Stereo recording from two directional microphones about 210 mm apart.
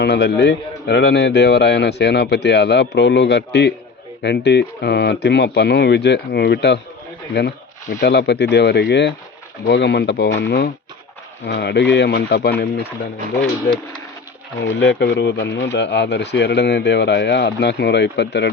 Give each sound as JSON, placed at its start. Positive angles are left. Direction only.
{"t": 0.0, "sound": "a man's voice", "side_deg": 50}
{"t": 14.6, "sound": "speech", "side_deg": 55}